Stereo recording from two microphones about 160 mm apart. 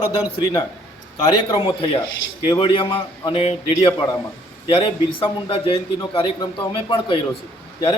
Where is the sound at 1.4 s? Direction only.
35° left (ahead or behind).